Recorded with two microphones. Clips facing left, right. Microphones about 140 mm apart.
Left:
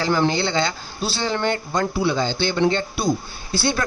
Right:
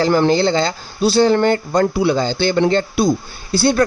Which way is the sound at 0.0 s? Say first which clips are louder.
Right 6 dB; 40° right (ahead or behind).